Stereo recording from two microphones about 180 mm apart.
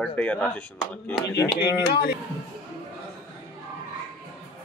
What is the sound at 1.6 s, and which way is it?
Speech, 65° left (ahead or behind).